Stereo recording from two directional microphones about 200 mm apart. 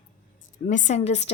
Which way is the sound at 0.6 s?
40° left (ahead or behind).